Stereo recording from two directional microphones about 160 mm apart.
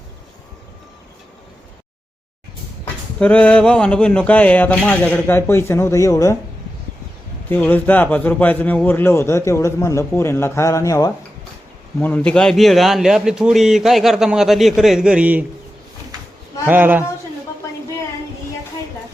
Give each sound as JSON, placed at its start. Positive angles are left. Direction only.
{"t": 3.2, "sound": "a man's voice", "side_deg": 10}
{"t": 7.5, "sound": "a man's voice", "side_deg": 10}
{"t": 12.0, "sound": "a man's voice", "side_deg": 10}
{"t": 16.6, "sound": "a man's voice", "side_deg": -10}